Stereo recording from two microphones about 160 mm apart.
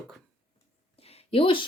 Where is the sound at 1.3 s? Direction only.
30° left (ahead or behind).